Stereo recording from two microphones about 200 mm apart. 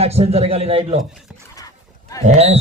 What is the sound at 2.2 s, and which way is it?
Speech, 35° right (ahead or behind).